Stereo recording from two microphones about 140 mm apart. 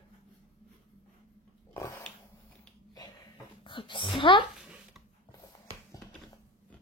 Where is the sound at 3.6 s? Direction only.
35° left (ahead or behind).